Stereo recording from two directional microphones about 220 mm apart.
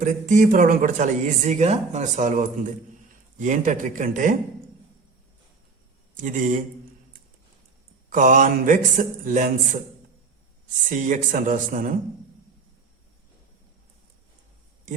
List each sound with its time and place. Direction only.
0.0 s speech: 35° right (ahead or behind)
6.1 s speech: 35° right (ahead or behind)
8.1 s speech: 35° right (ahead or behind)
10.9 s speech: 35° right (ahead or behind)